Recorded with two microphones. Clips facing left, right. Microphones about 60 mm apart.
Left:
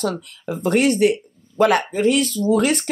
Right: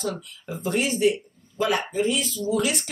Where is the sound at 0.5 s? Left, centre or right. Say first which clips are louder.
Left 8 dB; left.